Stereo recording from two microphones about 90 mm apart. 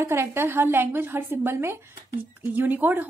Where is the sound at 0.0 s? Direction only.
30° right (ahead or behind).